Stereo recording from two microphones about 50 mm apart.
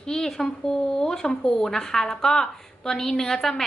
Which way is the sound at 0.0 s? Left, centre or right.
Centre.